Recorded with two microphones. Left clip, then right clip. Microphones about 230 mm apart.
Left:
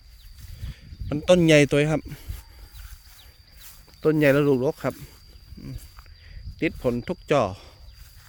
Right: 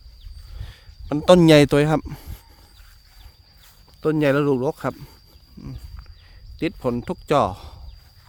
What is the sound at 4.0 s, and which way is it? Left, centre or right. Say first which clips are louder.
A man's voice: even; centre.